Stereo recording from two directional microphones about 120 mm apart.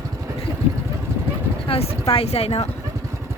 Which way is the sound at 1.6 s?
50° left (ahead or behind).